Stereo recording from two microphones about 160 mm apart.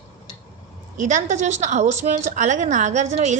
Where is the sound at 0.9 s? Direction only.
50° right (ahead or behind).